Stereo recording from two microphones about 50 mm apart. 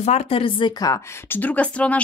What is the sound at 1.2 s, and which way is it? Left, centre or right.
Speech, left.